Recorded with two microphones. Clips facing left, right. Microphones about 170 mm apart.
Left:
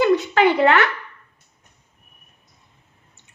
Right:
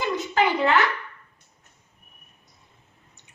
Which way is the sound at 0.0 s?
70° left (ahead or behind).